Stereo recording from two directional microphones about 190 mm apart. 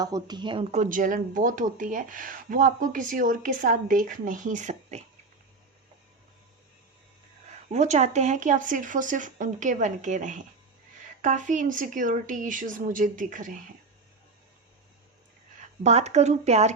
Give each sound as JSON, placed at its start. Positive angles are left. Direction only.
{"t": 0.0, "sound": "speech", "side_deg": -20}
{"t": 0.7, "sound": "speech", "side_deg": -40}
{"t": 7.7, "sound": "speech", "side_deg": -35}
{"t": 15.8, "sound": "speech", "side_deg": -35}